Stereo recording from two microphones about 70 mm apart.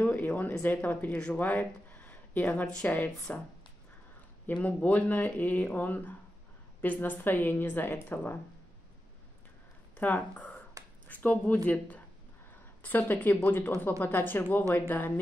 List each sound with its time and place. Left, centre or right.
0.0 s speech: left
4.5 s speech: left
9.9 s speech: left